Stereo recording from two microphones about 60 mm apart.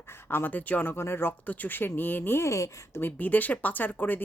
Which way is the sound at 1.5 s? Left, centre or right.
Left.